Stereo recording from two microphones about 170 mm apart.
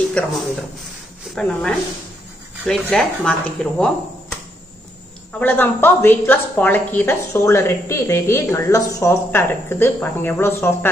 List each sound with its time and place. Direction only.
1.3 s speech: 5° left (ahead or behind)
5.4 s a woman's voice: 10° left (ahead or behind)